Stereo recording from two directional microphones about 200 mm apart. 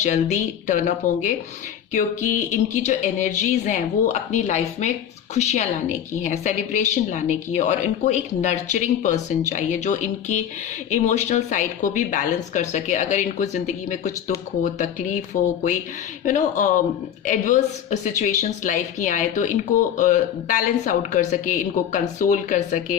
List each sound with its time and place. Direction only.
0.0 s a woman's voice: 35° left (ahead or behind)
16.2 s a woman's voice: 40° left (ahead or behind)